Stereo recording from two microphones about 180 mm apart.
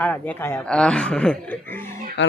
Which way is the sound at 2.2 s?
90° left.